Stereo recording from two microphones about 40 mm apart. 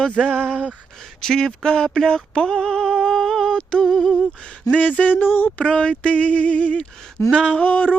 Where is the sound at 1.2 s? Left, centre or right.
Centre.